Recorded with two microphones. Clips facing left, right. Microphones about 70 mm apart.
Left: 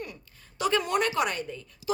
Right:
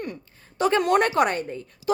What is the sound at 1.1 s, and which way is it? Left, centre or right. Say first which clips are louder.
Speech: right 6 dB; right.